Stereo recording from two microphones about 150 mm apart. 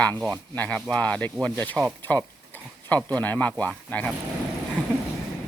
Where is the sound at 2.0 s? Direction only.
10° left (ahead or behind).